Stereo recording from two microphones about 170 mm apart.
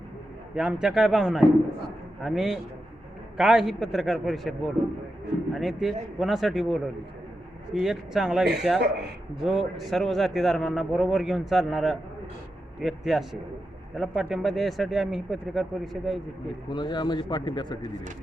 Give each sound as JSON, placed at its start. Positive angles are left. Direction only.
{"t": 0.5, "sound": "a man's voice", "side_deg": -5}
{"t": 5.5, "sound": "a man's voice", "side_deg": 0}
{"t": 16.6, "sound": "speech", "side_deg": 25}